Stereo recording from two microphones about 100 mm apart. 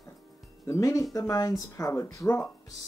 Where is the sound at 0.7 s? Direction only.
30° left (ahead or behind).